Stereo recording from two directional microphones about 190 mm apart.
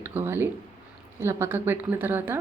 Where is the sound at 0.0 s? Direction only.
10° right (ahead or behind).